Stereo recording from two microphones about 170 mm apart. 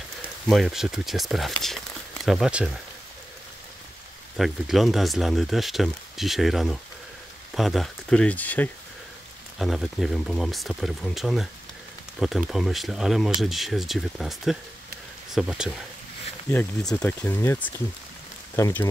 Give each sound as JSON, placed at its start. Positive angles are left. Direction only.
{"t": 0.2, "sound": "speech", "side_deg": 0}
{"t": 4.4, "sound": "speech", "side_deg": 0}
{"t": 9.6, "sound": "speech", "side_deg": 0}
{"t": 16.9, "sound": "speech", "side_deg": 10}